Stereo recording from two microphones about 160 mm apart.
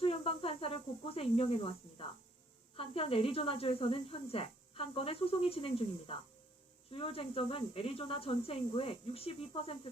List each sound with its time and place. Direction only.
0.0 s speech: 35° left (ahead or behind)